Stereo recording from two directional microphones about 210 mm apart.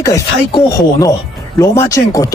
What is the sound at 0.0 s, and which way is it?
Speech, 20° left (ahead or behind).